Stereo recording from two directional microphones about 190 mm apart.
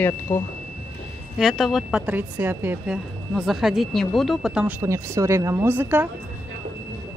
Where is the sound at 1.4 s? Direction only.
Centre (ahead or behind).